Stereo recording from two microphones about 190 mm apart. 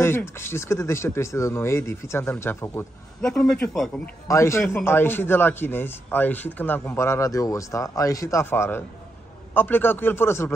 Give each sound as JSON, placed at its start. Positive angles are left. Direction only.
{"t": 0.0, "sound": "a man's voice", "side_deg": 10}
{"t": 4.3, "sound": "a man's voice", "side_deg": 15}